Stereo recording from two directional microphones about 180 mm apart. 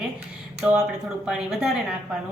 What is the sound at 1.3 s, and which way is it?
Speech, 5° right (ahead or behind).